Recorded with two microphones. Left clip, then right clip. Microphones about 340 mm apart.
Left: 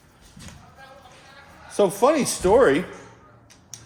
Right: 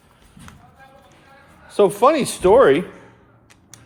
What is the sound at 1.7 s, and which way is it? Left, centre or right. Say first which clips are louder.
Speech: right 4 dB; right.